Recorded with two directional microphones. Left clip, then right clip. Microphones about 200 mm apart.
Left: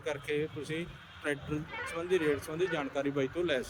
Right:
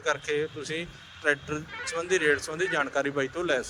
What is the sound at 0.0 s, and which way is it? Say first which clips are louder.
A man's voice: right 6 dB; centre (ahead or behind).